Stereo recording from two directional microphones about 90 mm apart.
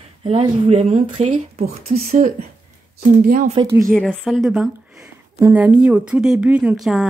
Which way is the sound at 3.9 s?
5° left (ahead or behind).